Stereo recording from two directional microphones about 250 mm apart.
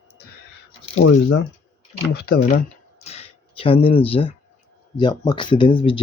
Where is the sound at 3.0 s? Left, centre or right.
Left.